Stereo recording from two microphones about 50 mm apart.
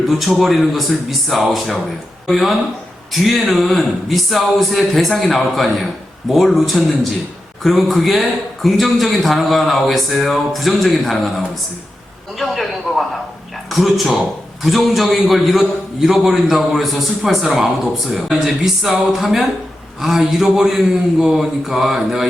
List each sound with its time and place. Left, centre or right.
0.2 s speech: centre
12.4 s a man's voice: centre